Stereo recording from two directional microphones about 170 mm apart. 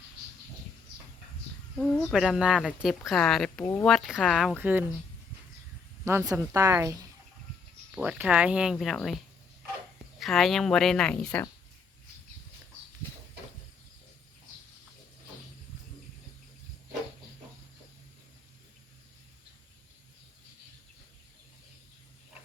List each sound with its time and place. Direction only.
1.8 s speech: centre (ahead or behind)
3.9 s speech: centre (ahead or behind)
4.5 s a woman's voice: 10° right (ahead or behind)
6.1 s a woman's voice: 15° right (ahead or behind)
10.2 s speech: centre (ahead or behind)